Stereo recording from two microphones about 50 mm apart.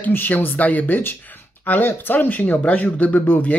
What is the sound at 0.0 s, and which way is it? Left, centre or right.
Speech, left.